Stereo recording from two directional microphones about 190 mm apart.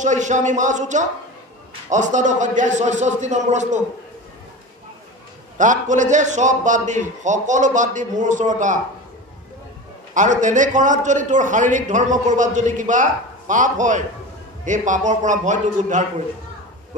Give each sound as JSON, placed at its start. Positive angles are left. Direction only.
{"t": 0.0, "sound": "a man's voice", "side_deg": -40}
{"t": 5.6, "sound": "a man's voice", "side_deg": -40}
{"t": 10.1, "sound": "a man's voice", "side_deg": -40}